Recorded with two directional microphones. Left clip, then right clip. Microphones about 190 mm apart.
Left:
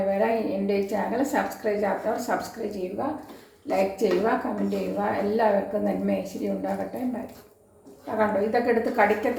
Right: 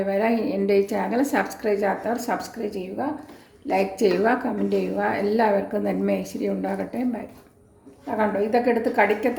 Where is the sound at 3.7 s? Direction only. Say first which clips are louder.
Right 2 dB; 60° right (ahead or behind).